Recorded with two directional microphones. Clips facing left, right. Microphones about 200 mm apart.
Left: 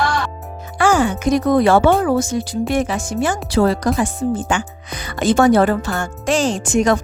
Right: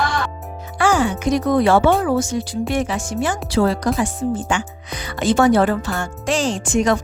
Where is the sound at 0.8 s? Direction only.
45° left (ahead or behind).